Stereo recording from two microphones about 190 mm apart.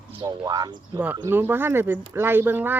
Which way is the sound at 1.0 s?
10° right (ahead or behind).